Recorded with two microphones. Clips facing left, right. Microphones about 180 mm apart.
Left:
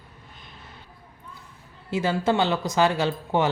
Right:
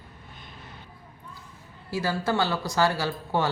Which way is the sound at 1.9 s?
20° left (ahead or behind).